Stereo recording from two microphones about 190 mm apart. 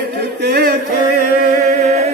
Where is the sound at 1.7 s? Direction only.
35° right (ahead or behind).